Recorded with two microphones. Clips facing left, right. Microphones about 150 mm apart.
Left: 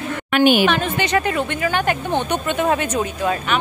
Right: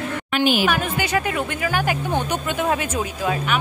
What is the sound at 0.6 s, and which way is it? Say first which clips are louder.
A woman's voice: left 3 dB; 5° right (ahead or behind).